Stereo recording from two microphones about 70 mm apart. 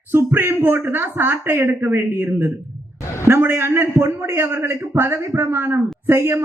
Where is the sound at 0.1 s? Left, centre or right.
Right.